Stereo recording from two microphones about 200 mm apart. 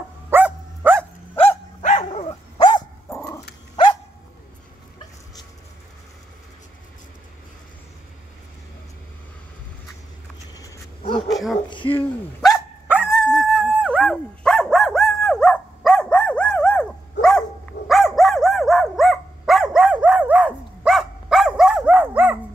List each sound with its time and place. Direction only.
0.3 s dog: 10° right (ahead or behind)
1.3 s dog: 10° left (ahead or behind)
2.0 s dog: 30° left (ahead or behind)
3.1 s dog: 15° left (ahead or behind)
11.0 s dog: 25° left (ahead or behind)
11.2 s dog: centre (ahead or behind)
11.9 s hiccup: 10° left (ahead or behind)
12.9 s dog: 5° right (ahead or behind)